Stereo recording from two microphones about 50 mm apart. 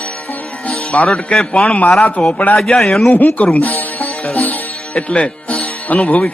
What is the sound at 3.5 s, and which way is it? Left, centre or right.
Music, left.